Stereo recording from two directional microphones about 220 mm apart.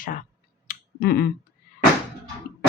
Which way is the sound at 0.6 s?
45° left (ahead or behind).